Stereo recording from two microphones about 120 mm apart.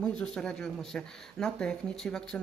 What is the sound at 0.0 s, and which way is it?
Speech, 5° left (ahead or behind).